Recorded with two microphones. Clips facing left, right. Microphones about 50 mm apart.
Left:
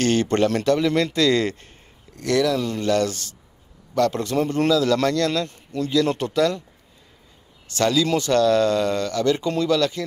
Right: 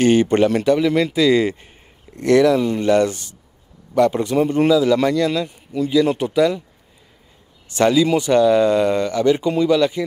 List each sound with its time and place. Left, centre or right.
0.0 s a man's voice: centre
2.1 s a man's voice: right
7.7 s a man's voice: centre